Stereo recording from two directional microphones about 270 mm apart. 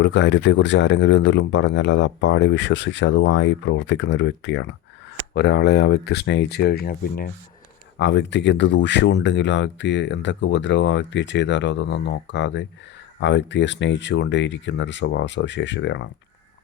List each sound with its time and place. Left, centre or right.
0.0 s speech: left